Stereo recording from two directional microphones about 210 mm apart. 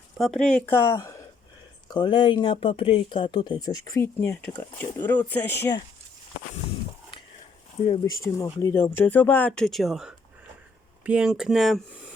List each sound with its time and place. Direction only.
0.2 s speech: centre (ahead or behind)
7.9 s speech: 20° left (ahead or behind); by 11.8 s centre (ahead or behind)